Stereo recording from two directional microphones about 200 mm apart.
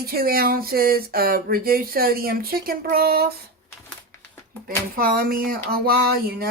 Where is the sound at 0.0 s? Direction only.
50° right (ahead or behind).